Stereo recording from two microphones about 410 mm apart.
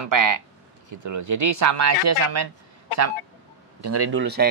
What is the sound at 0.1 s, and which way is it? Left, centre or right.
Speech, right.